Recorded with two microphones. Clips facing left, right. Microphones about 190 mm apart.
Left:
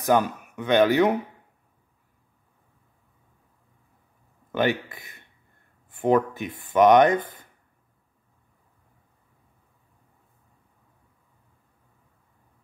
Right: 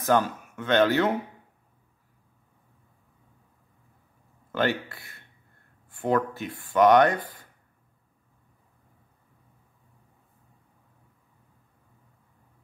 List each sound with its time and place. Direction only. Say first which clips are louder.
0.0 s speech: left 2 dB; 15° left (ahead or behind)
4.5 s speech: left 2 dB; 15° left (ahead or behind)